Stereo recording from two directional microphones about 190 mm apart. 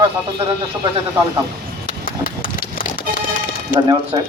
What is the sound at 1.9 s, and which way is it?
Horse, 45° left (ahead or behind).